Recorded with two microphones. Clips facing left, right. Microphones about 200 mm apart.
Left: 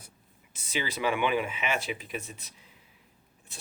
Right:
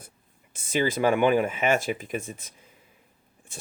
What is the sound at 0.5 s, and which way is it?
Speech, 50° right (ahead or behind).